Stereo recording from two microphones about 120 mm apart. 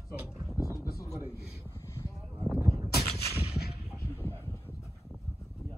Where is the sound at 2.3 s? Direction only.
5° right (ahead or behind).